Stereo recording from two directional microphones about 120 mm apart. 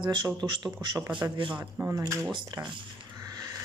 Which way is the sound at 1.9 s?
25° right (ahead or behind).